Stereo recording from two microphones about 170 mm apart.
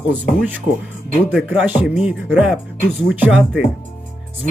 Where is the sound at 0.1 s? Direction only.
10° right (ahead or behind).